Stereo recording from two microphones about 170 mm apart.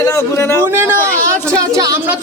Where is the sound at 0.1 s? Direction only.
15° left (ahead or behind).